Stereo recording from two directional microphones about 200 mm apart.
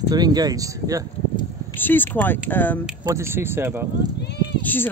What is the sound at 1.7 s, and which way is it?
Speech, 10° left (ahead or behind).